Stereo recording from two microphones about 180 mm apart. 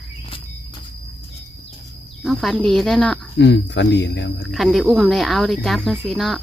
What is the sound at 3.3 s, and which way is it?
Speech, 80° left.